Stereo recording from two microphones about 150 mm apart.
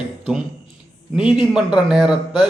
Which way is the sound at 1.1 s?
5° right (ahead or behind).